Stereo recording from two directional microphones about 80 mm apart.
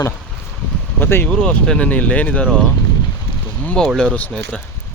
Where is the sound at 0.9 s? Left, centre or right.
Left.